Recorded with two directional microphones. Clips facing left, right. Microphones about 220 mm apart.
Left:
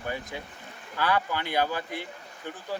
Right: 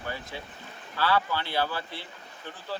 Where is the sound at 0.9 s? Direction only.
15° left (ahead or behind).